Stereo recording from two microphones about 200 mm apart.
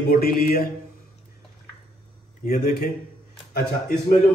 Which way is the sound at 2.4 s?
50° left (ahead or behind).